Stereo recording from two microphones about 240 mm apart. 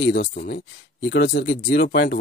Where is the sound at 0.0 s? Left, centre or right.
Left.